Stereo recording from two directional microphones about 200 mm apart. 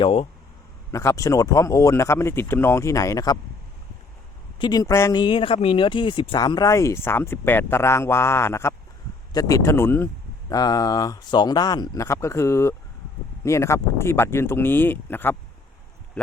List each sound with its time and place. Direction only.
0.0 s speech: 25° left (ahead or behind)
0.9 s speech: 15° left (ahead or behind)
4.5 s speech: 20° left (ahead or behind)